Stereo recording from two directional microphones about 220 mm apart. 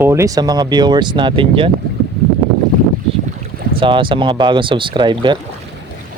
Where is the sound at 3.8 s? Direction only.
20° right (ahead or behind).